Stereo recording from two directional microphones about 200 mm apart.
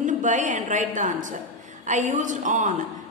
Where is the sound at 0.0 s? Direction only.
40° right (ahead or behind).